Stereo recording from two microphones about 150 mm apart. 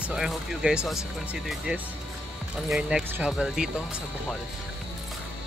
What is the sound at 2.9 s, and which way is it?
Speech, 10° right (ahead or behind).